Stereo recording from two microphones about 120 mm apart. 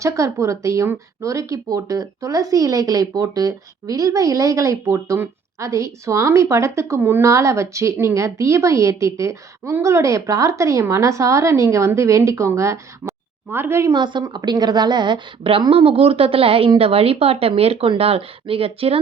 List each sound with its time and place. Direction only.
0.0 s speech: 25° right (ahead or behind)
13.9 s a woman's voice: 40° right (ahead or behind)